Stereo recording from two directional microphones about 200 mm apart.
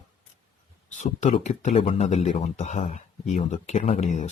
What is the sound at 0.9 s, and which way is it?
Speech, 35° left (ahead or behind).